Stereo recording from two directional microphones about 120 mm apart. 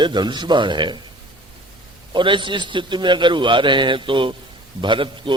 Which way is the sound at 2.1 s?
40° right (ahead or behind).